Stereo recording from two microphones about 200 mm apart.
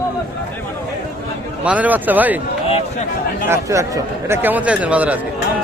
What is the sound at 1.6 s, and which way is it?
Speech, 5° right (ahead or behind).